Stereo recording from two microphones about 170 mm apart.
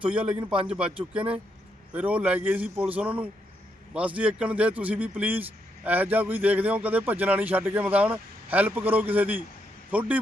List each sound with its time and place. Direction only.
0.0 s speech: 5° right (ahead or behind)
0.3 s a man's voice: 30° right (ahead or behind)
0.7 s speech: 5° right (ahead or behind)